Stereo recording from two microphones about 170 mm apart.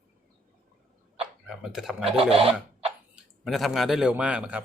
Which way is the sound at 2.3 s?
35° right (ahead or behind).